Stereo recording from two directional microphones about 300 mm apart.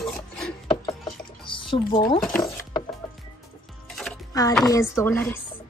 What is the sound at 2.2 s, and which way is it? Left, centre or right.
Speech, centre.